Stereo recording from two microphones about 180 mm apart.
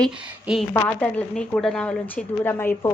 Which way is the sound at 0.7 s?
5° left (ahead or behind).